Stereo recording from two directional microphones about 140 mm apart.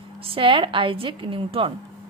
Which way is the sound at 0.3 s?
40° right (ahead or behind).